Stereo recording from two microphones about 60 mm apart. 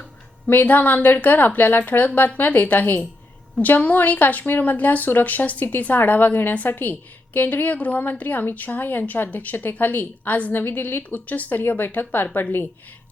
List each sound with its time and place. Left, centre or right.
0.4 s a woman's voice: left